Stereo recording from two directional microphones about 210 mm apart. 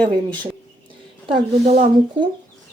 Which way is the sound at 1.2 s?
25° right (ahead or behind).